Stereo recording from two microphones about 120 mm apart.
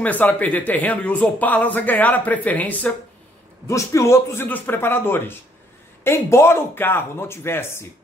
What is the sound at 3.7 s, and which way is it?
A man's voice, 25° left (ahead or behind).